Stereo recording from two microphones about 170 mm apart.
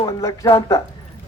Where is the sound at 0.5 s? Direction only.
15° left (ahead or behind).